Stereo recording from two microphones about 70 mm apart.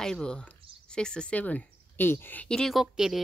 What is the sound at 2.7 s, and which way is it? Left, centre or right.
Speech, centre.